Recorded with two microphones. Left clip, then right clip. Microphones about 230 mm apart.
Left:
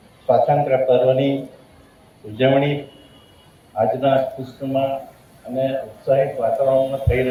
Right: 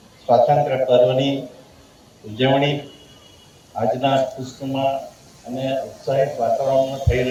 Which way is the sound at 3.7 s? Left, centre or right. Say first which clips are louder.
Left 1 dB; right.